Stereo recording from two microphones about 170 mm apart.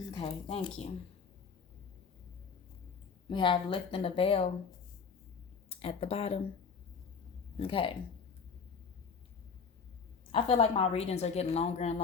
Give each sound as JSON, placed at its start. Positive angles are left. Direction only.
{"t": 0.1, "sound": "a woman's voice", "side_deg": 30}
{"t": 3.2, "sound": "a woman's voice", "side_deg": 30}
{"t": 5.6, "sound": "speech", "side_deg": 35}
{"t": 7.6, "sound": "a woman's voice", "side_deg": 30}
{"t": 10.3, "sound": "a woman's voice", "side_deg": 35}